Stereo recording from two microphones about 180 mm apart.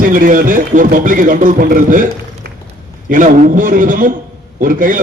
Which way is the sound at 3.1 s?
45° right (ahead or behind).